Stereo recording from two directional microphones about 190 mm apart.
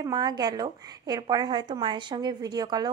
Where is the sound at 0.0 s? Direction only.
20° right (ahead or behind).